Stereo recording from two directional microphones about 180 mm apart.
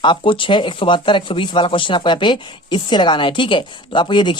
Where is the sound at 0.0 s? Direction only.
25° left (ahead or behind).